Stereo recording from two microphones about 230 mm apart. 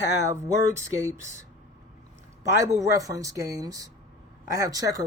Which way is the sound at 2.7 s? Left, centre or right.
Centre.